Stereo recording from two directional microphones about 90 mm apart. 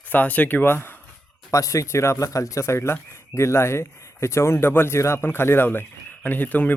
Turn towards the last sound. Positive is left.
turn(degrees=20)  # may be behind; listen again after turning